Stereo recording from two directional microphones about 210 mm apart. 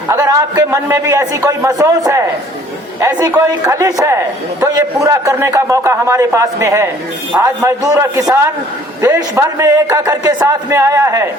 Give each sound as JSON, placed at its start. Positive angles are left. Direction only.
{"t": 0.1, "sound": "a man's voice", "side_deg": -15}